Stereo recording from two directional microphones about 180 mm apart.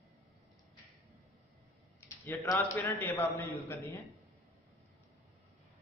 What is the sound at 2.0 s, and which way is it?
A man's voice, 15° left (ahead or behind).